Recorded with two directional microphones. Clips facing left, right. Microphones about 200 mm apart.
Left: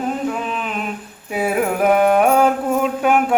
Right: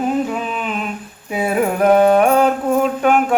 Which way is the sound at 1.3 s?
5° left (ahead or behind).